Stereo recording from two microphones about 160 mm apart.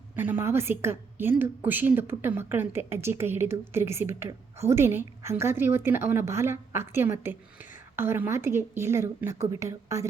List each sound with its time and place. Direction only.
0.2 s a woman's voice: 15° right (ahead or behind)